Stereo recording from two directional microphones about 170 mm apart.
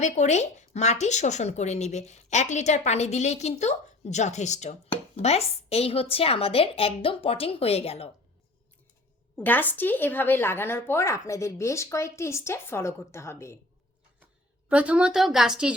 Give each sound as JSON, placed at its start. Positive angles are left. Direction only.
{"t": 0.0, "sound": "a woman's voice", "side_deg": 45}
{"t": 9.3, "sound": "speech", "side_deg": 10}
{"t": 14.7, "sound": "a woman's voice", "side_deg": -10}